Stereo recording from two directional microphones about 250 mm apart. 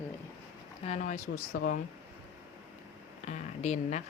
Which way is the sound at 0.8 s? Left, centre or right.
Left.